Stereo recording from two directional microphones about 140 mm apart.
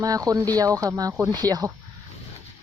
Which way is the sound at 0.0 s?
25° right (ahead or behind).